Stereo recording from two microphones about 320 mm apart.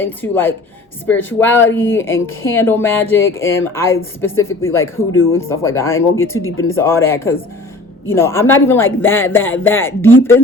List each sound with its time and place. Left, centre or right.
0.0 s speech: centre
5.1 s speech: left
5.4 s speech: centre